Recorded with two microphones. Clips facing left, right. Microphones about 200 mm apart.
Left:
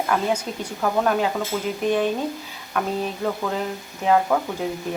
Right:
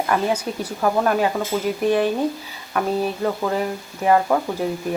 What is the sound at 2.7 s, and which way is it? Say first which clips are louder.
Speech: right 3 dB; 5° right (ahead or behind).